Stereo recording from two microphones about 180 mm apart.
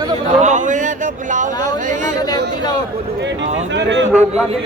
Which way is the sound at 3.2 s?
80° right.